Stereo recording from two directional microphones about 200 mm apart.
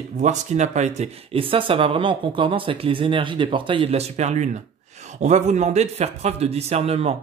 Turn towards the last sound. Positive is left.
turn(degrees=-30)  # may be behind; listen again after turning